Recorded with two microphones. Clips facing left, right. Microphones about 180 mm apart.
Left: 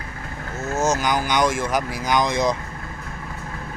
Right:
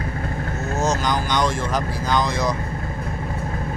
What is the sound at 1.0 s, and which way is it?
Speech, 10° left (ahead or behind).